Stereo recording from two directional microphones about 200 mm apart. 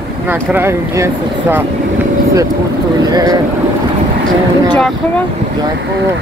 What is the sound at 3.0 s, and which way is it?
Speech, 20° right (ahead or behind).